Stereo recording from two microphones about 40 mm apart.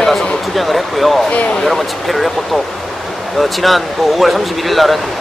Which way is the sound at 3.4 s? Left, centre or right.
Centre.